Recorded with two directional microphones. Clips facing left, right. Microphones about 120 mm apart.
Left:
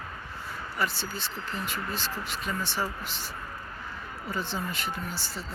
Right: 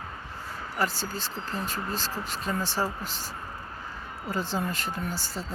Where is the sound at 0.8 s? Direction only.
40° right (ahead or behind).